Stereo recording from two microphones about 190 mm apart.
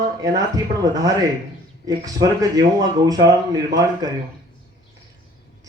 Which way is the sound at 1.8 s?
20° right (ahead or behind).